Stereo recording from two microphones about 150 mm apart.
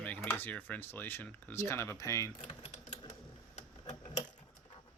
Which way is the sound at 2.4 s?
40° left (ahead or behind).